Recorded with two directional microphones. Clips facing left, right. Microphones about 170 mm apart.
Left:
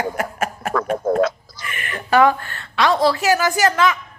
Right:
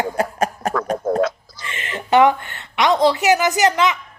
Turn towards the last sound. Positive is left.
turn(degrees=-20)  # may be behind; listen again after turning